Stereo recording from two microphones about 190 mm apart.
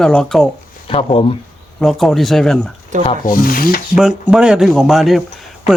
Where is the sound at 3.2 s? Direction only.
45° left (ahead or behind).